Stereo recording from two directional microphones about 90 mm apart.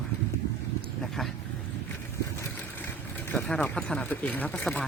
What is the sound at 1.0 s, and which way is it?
Speech, 5° left (ahead or behind).